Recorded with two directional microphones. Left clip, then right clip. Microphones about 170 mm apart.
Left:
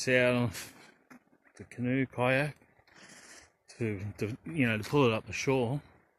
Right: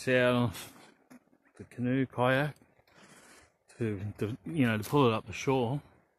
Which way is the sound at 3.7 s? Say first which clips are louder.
Even; 15° right (ahead or behind).